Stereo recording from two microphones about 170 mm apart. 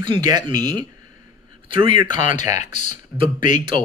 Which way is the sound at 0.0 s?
25° right (ahead or behind).